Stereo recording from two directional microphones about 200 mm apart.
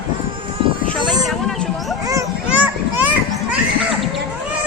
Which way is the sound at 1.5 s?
Centre (ahead or behind).